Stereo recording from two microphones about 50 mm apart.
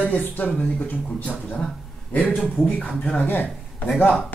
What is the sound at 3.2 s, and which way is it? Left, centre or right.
Speech, left.